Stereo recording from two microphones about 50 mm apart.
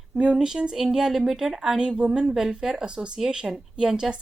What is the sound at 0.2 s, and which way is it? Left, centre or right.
A woman's voice, centre.